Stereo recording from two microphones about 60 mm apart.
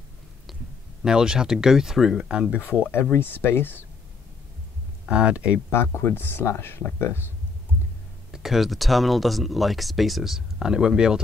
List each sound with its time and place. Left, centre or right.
1.0 s speech: centre
2.8 s speech: left
5.0 s speech: centre
5.7 s speech: left
8.3 s speech: centre